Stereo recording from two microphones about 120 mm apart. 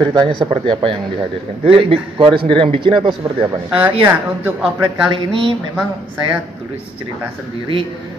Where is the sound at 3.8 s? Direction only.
15° right (ahead or behind).